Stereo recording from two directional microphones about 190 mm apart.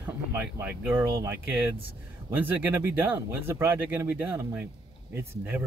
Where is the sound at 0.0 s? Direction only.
10° right (ahead or behind).